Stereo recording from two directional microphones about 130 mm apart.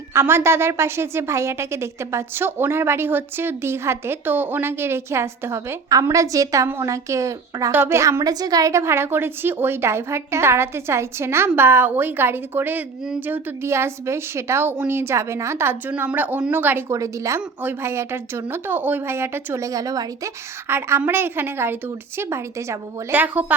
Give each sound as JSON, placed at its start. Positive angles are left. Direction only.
{"t": 0.1, "sound": "a woman's voice", "side_deg": -20}